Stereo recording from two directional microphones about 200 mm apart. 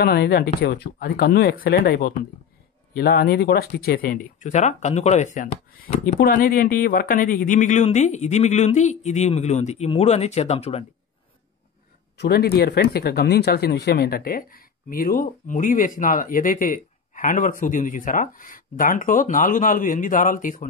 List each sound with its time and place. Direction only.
0.0 s speech: 50° left (ahead or behind); by 10.9 s 30° left (ahead or behind)
12.2 s speech: 55° left (ahead or behind)